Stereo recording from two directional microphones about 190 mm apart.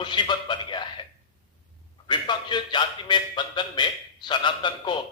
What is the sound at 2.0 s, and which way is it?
A man's voice, 25° left (ahead or behind).